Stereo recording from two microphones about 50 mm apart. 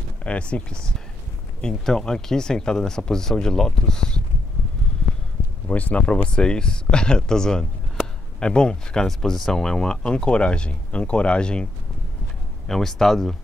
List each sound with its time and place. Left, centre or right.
0.2 s speech: left
5.7 s speech: left
6.2 s speech: centre
12.6 s speech: centre